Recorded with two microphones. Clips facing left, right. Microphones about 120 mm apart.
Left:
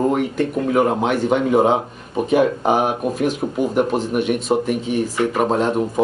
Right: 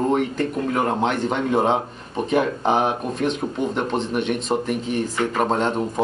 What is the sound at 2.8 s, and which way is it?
A man's voice, 5° left (ahead or behind).